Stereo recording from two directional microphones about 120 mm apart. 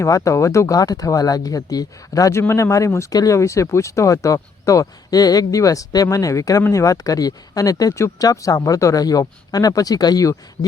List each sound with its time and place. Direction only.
0.0 s speech: 25° left (ahead or behind)